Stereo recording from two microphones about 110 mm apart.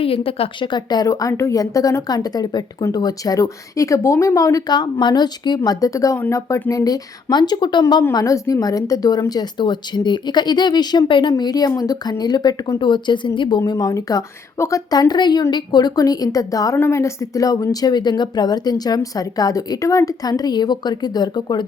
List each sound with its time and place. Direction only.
0.0 s a woman's voice: 60° left (ahead or behind)
0.7 s speech: 40° left (ahead or behind)
8.1 s a woman's voice: 30° left (ahead or behind); by 13.6 s 45° left (ahead or behind)
13.7 s speech: 35° left (ahead or behind)